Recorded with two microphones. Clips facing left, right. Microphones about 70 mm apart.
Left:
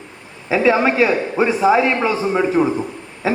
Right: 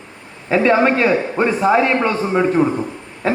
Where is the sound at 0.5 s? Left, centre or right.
Centre.